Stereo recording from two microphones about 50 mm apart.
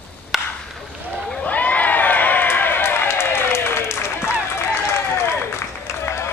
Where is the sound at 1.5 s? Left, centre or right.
Left.